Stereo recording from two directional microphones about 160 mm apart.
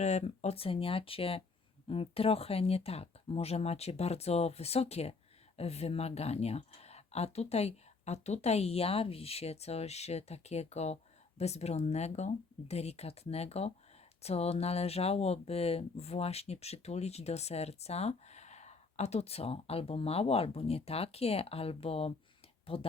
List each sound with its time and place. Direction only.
0.0 s speech: 45° left (ahead or behind)